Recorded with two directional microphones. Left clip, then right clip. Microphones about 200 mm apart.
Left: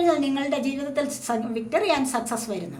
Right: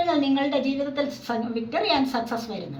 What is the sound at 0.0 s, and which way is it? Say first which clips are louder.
A woman's voice: even; 50° left (ahead or behind).